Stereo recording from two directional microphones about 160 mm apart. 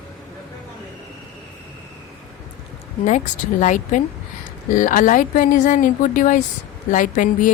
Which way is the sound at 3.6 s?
50° left (ahead or behind).